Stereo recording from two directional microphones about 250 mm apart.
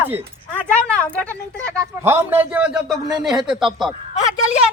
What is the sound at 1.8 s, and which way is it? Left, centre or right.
A man's voice, centre.